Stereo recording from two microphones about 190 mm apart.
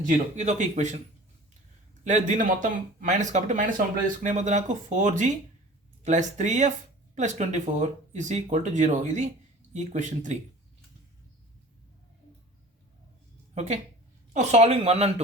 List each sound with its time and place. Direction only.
0.3 s speech: 40° right (ahead or behind)
2.0 s speech: 40° right (ahead or behind)
13.5 s speech: 35° right (ahead or behind)